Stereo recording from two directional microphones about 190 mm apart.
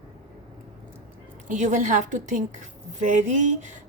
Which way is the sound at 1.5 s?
40° right (ahead or behind).